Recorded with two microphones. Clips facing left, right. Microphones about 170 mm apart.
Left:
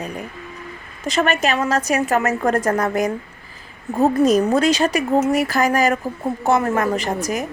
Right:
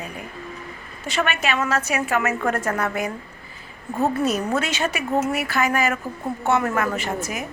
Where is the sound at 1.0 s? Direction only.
40° left (ahead or behind).